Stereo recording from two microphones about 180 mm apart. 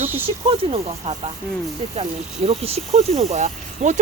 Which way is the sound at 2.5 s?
35° right (ahead or behind).